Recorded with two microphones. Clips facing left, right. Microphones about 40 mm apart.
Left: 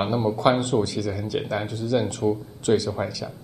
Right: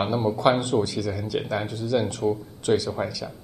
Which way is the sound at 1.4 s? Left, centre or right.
Centre.